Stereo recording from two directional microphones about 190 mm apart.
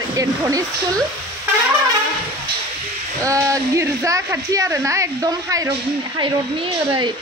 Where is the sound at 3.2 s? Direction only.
15° right (ahead or behind).